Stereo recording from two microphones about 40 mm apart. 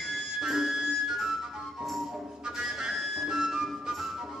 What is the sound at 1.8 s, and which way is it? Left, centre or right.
Music, centre.